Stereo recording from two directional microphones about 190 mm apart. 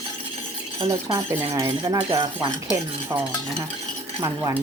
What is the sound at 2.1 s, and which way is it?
Speech, 25° right (ahead or behind).